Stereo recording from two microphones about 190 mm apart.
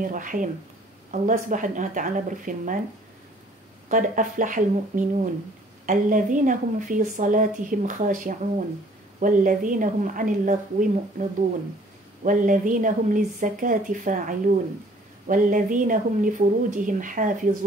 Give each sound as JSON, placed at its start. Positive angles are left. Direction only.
{"t": 0.0, "sound": "speech", "side_deg": -45}
{"t": 3.9, "sound": "speech", "side_deg": -45}